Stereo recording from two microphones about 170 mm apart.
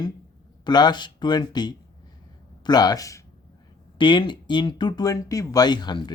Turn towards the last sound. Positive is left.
turn(degrees=25)  # may be behind; listen again after turning